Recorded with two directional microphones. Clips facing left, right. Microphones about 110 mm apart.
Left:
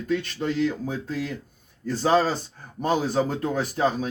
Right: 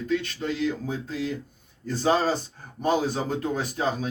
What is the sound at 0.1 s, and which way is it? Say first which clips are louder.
Speech: left 2 dB; 45° left (ahead or behind).